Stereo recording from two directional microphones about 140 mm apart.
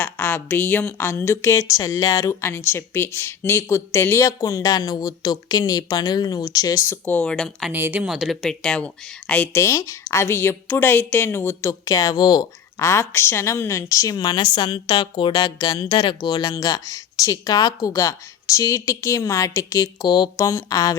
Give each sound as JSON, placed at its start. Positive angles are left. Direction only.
{"t": 0.0, "sound": "speech", "side_deg": 15}
{"t": 7.7, "sound": "speech", "side_deg": -15}
{"t": 8.0, "sound": "speech", "side_deg": -5}